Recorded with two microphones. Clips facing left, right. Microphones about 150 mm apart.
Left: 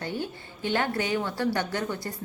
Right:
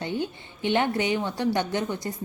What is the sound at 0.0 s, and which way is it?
A woman's voice, 20° right (ahead or behind).